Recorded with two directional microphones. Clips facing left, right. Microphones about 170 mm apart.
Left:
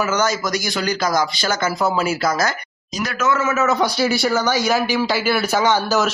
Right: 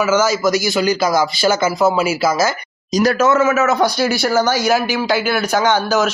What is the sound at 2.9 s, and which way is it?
Speech, 35° right (ahead or behind).